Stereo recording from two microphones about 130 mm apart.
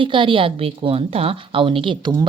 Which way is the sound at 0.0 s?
40° right (ahead or behind).